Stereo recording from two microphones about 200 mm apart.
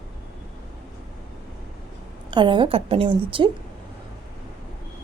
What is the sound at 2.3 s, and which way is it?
A woman's voice, 25° right (ahead or behind).